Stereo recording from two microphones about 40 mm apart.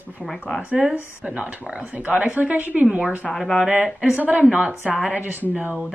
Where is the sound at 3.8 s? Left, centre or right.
Right.